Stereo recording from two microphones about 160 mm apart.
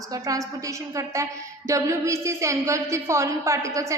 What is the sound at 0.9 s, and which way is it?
A woman's voice, 20° right (ahead or behind).